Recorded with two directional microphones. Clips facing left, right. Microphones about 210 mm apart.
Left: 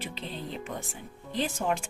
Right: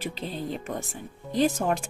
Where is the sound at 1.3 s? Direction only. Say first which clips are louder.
Right 6 dB; 40° right (ahead or behind).